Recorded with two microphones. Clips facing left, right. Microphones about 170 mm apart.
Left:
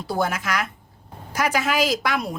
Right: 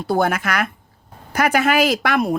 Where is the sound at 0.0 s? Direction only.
60° right (ahead or behind).